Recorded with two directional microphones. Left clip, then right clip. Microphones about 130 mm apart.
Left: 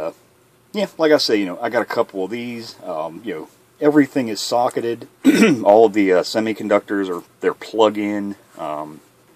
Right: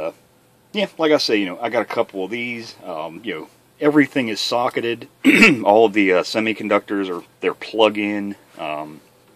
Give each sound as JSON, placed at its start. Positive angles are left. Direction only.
{"t": 0.7, "sound": "speech", "side_deg": 15}
{"t": 3.9, "sound": "speech", "side_deg": -20}
{"t": 4.3, "sound": "speech", "side_deg": 5}